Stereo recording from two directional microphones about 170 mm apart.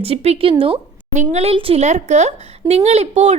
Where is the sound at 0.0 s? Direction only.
35° right (ahead or behind).